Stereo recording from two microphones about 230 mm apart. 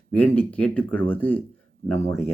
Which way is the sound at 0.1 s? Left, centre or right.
Centre.